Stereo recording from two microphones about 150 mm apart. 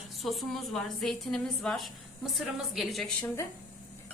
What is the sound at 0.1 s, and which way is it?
A woman's voice, centre (ahead or behind).